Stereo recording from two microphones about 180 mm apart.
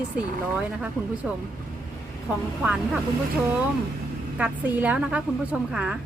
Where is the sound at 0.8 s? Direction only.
5° right (ahead or behind).